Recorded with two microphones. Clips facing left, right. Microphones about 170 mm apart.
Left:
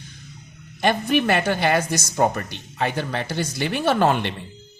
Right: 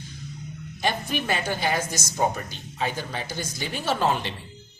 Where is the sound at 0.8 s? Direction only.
65° left (ahead or behind).